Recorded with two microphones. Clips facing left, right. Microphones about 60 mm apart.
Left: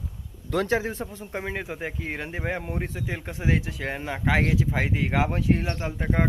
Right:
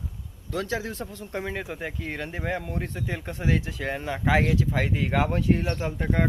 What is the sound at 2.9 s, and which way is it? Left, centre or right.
Speech, centre.